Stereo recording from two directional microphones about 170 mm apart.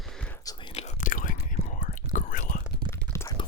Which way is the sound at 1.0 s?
50° left (ahead or behind).